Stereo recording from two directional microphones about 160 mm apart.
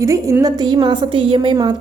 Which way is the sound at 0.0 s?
20° right (ahead or behind).